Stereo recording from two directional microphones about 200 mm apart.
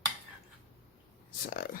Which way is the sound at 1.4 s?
45° left (ahead or behind).